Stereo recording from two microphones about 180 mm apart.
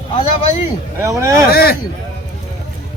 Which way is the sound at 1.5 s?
60° left (ahead or behind).